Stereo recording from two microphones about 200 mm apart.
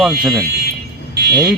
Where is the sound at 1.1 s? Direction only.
55° right (ahead or behind).